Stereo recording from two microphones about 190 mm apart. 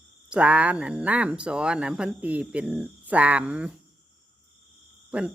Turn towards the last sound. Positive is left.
turn(degrees=-5)  # may be behind; listen again after turning